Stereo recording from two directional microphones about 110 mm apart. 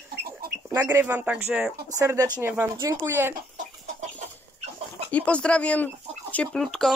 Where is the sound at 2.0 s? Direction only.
25° right (ahead or behind).